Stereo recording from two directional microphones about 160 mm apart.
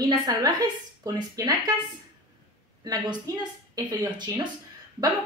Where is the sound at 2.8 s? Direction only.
25° right (ahead or behind).